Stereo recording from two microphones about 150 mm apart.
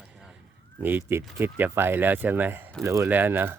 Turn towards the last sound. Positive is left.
turn(degrees=-15)  # may be behind; listen again after turning